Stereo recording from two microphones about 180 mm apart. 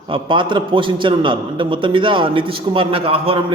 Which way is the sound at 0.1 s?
25° right (ahead or behind).